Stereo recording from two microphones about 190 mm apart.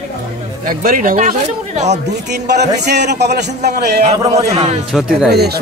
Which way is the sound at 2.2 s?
60° right (ahead or behind).